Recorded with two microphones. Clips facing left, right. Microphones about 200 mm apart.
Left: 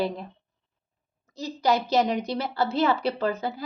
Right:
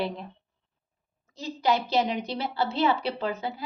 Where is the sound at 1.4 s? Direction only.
40° left (ahead or behind).